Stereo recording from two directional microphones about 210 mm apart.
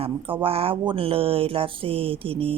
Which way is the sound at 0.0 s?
25° right (ahead or behind).